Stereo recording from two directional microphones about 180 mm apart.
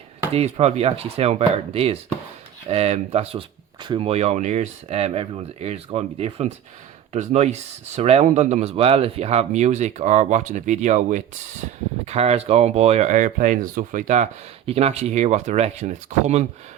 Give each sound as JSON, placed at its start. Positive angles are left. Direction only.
{"t": 0.3, "sound": "speech", "side_deg": -35}